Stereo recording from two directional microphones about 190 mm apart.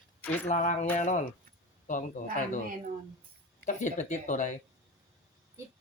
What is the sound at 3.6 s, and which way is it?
Speech, 40° left (ahead or behind).